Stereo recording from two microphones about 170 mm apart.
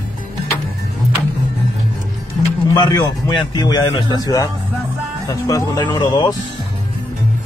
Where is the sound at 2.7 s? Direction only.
25° left (ahead or behind).